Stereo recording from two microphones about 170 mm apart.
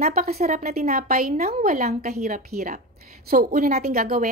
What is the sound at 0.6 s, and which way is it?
A woman's voice, 60° right (ahead or behind).